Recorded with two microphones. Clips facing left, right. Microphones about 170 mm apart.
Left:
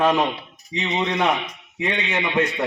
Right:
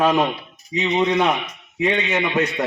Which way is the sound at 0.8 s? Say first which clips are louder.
Right 5 dB; 15° right (ahead or behind).